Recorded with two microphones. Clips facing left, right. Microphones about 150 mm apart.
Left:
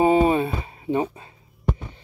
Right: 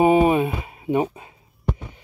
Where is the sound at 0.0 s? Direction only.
15° right (ahead or behind).